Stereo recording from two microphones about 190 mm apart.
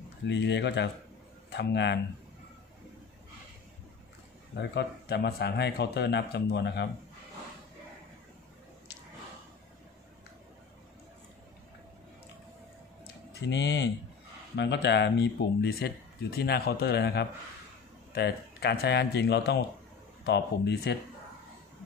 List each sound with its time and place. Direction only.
0.3 s speech: 65° left (ahead or behind)
4.6 s speech: 60° left (ahead or behind)
13.3 s speech: 65° left (ahead or behind)